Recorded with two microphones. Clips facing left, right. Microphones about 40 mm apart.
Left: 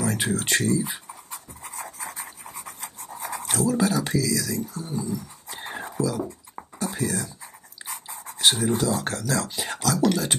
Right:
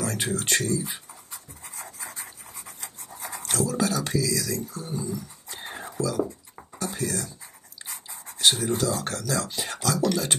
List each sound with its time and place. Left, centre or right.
0.0 s speech: centre
1.3 s a sound: left
2.0 s a sound: centre
3.3 s speech: centre
4.8 s music: centre
6.8 s speech: centre
7.9 s dog: left
8.5 s speech: centre